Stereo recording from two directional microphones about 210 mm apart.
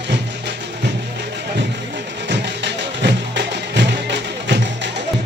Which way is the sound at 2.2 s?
55° right (ahead or behind).